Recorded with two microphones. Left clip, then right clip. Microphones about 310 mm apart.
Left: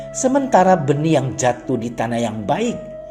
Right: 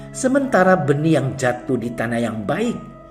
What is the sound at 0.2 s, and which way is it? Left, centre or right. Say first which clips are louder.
Speech: left 2 dB; centre.